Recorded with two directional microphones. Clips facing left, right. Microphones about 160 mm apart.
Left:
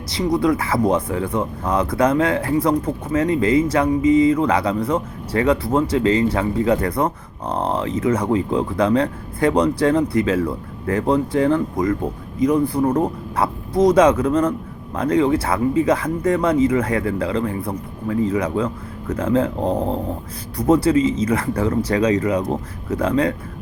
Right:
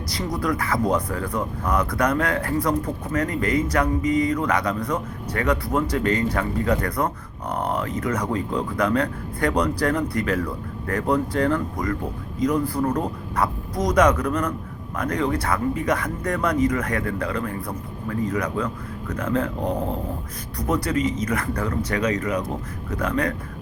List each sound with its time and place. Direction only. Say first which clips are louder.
0.1 s speech: left 8 dB; 25° left (ahead or behind)